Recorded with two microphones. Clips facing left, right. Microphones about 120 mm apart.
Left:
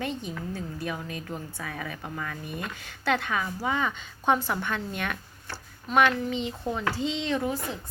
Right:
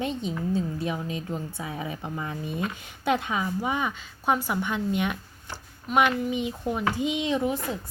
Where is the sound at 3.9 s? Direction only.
5° right (ahead or behind).